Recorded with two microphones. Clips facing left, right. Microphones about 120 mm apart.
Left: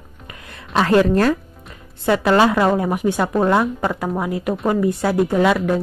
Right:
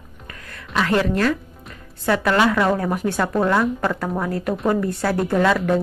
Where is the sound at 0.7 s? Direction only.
35° left (ahead or behind).